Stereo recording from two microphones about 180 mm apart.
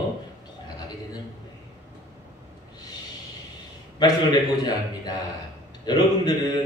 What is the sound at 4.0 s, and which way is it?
A man's voice, 20° left (ahead or behind).